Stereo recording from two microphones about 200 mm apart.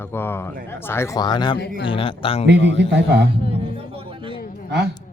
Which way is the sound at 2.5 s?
60° right (ahead or behind).